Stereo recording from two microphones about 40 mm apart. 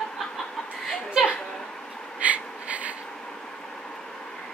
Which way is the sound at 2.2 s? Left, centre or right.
Right.